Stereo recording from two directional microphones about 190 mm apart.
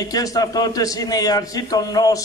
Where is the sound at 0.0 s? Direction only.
20° left (ahead or behind).